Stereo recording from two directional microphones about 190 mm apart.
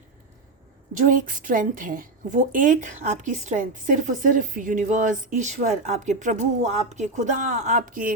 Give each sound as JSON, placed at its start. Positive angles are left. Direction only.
{"t": 0.9, "sound": "a woman's voice", "side_deg": -45}